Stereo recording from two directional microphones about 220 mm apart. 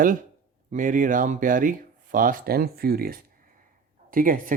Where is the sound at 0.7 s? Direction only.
35° right (ahead or behind).